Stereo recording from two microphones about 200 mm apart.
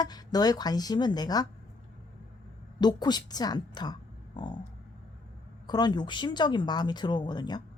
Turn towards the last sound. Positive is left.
turn(degrees=20)  # may be behind; listen again after turning